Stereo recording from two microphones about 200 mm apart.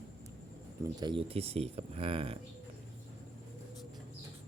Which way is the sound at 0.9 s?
25° right (ahead or behind).